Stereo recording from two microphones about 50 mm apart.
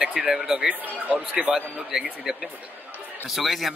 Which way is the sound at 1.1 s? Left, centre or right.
Right.